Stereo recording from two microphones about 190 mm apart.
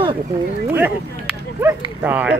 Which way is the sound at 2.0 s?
10° right (ahead or behind).